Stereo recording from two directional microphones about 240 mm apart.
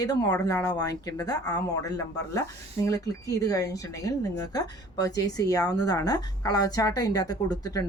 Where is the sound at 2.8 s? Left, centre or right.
Centre.